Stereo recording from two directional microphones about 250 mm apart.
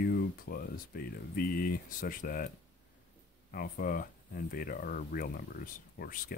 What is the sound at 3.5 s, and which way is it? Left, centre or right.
Speech, left.